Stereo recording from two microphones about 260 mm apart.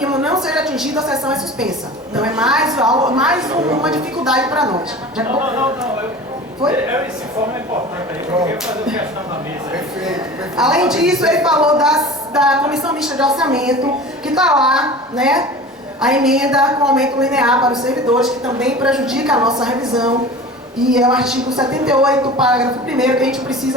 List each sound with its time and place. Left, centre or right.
0.0 s a sound: centre
2.1 s a woman's voice: centre
2.9 s speech: centre
3.2 s a woman's voice: centre
3.5 s speech: centre
3.8 s a woman's voice: centre
8.3 s a woman's voice: centre
10.6 s a woman's voice: centre